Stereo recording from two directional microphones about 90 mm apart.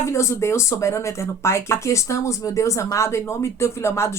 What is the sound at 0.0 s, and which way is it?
Speech, 30° left (ahead or behind).